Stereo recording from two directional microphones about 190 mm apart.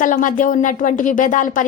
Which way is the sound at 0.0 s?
45° left (ahead or behind).